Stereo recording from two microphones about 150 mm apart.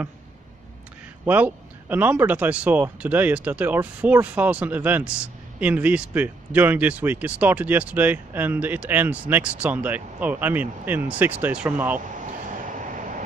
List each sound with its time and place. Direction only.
1.2 s speech: 10° right (ahead or behind)
12.6 s vehicle: 60° right (ahead or behind)